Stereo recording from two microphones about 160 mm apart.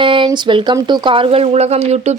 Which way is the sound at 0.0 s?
30° right (ahead or behind).